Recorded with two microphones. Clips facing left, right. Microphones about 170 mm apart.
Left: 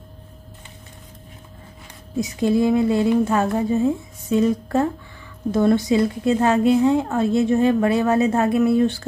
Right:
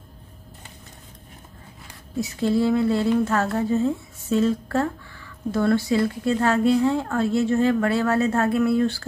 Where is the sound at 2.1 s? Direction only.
15° left (ahead or behind).